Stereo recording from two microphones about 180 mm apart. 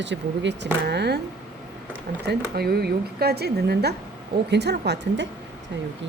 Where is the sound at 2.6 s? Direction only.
60° right (ahead or behind).